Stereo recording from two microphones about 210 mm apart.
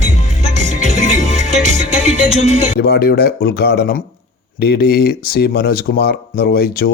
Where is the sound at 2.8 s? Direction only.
50° left (ahead or behind).